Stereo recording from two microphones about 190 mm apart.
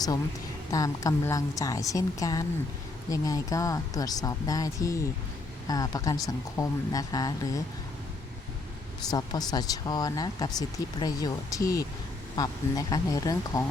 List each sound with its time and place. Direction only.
0.7 s speech: 20° left (ahead or behind)
9.0 s speech: 20° left (ahead or behind)